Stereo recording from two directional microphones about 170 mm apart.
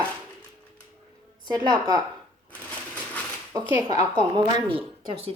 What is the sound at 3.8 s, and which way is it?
A woman's voice, 25° right (ahead or behind).